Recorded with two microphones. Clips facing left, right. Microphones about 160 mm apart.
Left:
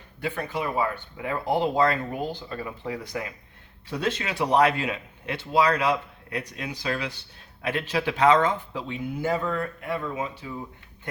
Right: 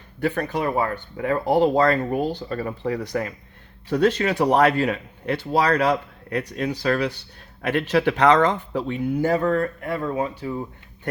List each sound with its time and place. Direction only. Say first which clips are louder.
0.2 s speech: right 6 dB; 60° right (ahead or behind); by 6.7 s 40° right (ahead or behind)
6.8 s speech: right 6 dB; 50° right (ahead or behind); by 8.5 s 65° right (ahead or behind)
8.7 s speech: right 7 dB; 50° right (ahead or behind)